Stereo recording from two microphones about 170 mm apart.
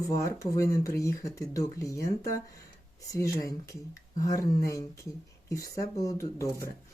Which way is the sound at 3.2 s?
20° left (ahead or behind).